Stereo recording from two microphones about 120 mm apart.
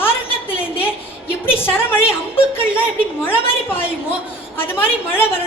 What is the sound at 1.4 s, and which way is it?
Speech, 20° left (ahead or behind).